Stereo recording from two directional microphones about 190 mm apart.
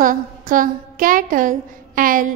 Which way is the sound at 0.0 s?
45° right (ahead or behind).